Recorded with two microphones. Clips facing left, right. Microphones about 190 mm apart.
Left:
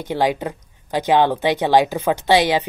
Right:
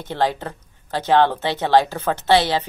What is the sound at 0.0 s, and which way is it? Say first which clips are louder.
Speech: left 3 dB; 10° left (ahead or behind).